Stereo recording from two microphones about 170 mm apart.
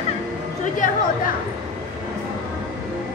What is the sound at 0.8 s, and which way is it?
Speech, 45° left (ahead or behind).